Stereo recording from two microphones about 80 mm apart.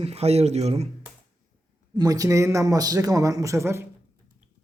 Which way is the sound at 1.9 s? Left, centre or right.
Right.